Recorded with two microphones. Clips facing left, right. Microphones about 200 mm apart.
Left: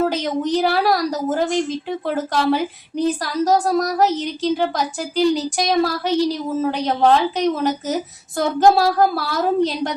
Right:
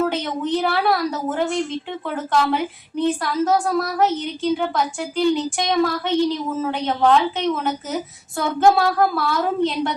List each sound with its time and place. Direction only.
0.0 s a woman's voice: 40° left (ahead or behind)